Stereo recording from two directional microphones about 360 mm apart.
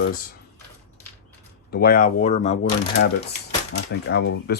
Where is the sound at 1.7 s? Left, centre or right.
Left.